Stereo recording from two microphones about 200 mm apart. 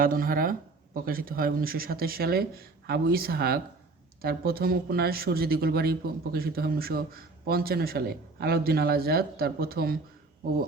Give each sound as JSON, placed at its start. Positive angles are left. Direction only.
{"t": 0.0, "sound": "speech", "side_deg": -45}